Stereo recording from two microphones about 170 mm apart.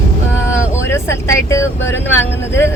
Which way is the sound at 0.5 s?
15° left (ahead or behind).